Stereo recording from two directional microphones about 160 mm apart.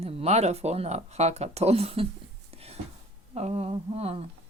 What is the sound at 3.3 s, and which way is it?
Speech, 40° right (ahead or behind).